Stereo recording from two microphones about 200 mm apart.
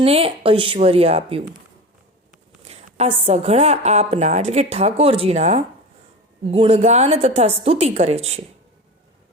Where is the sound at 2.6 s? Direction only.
30° right (ahead or behind).